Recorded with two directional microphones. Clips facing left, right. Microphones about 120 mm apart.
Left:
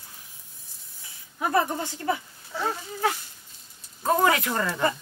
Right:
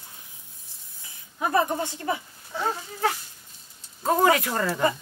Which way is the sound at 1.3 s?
20° right (ahead or behind).